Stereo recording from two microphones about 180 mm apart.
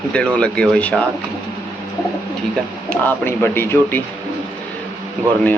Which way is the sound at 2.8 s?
10° left (ahead or behind).